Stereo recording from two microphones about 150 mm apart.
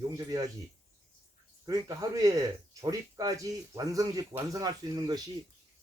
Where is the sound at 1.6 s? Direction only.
25° right (ahead or behind).